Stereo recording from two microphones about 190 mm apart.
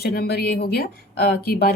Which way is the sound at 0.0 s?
55° left (ahead or behind).